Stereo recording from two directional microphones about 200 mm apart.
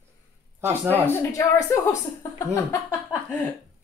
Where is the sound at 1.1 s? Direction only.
15° left (ahead or behind).